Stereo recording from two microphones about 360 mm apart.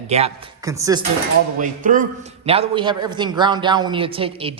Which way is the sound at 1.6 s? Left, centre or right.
Right.